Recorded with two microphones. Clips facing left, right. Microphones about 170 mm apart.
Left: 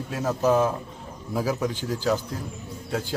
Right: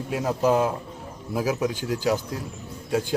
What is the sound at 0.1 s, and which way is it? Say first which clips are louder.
Speech: even; 10° right (ahead or behind).